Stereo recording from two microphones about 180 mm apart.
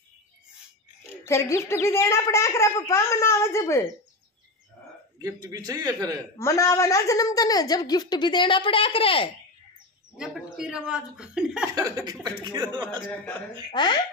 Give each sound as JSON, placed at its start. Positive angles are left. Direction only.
{"t": 1.2, "sound": "a woman's voice", "side_deg": 15}
{"t": 5.2, "sound": "a man's voice", "side_deg": -20}
{"t": 6.3, "sound": "a woman's voice", "side_deg": 15}
{"t": 10.1, "sound": "speech", "side_deg": -5}
{"t": 12.4, "sound": "a man's voice", "side_deg": -25}
{"t": 13.7, "sound": "a woman's voice", "side_deg": 25}